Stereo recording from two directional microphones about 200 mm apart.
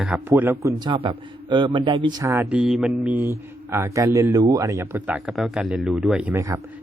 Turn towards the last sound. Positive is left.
turn(degrees=-15)  # may be behind; listen again after turning